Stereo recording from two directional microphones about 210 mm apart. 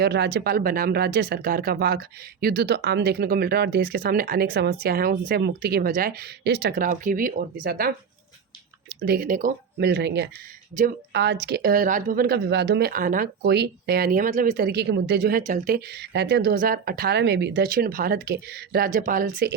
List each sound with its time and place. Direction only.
0.0 s speech: 50° right (ahead or behind)
9.0 s speech: 45° right (ahead or behind)
9.7 s speech: 50° right (ahead or behind); by 14.5 s 35° right (ahead or behind)
14.5 s speech: 50° right (ahead or behind)